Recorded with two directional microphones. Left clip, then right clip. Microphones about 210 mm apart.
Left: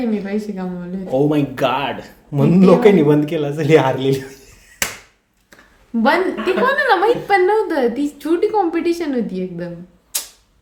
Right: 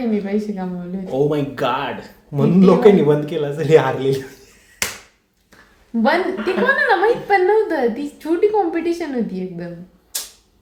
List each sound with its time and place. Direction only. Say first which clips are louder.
0.0 s a woman's voice: right 1 dB; centre (ahead or behind)
1.0 s a man's voice: left 2 dB; 20° left (ahead or behind)
6.0 s a woman's voice: left 2 dB; 5° left (ahead or behind)
10.1 s a sound: left 2 dB; 25° left (ahead or behind)